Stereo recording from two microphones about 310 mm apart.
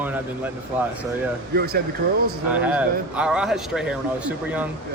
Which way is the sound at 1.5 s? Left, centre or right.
Right.